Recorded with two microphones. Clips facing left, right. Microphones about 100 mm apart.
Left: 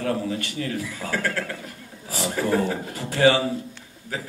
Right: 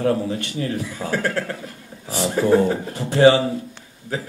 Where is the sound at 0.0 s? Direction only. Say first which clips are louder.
Right 5 dB; 25° right (ahead or behind).